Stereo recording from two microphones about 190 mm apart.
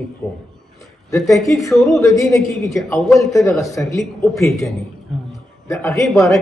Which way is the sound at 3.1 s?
15° left (ahead or behind).